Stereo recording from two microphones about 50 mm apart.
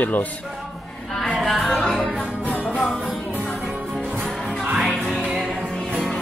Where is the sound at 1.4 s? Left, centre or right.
Centre.